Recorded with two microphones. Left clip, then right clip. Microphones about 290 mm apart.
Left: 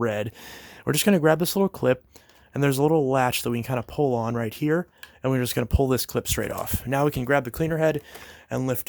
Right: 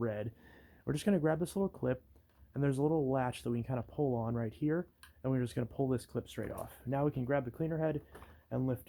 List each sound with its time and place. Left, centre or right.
0.0 s speech: left